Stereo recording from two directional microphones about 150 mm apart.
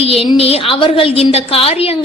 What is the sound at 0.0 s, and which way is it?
A woman's voice, 40° left (ahead or behind).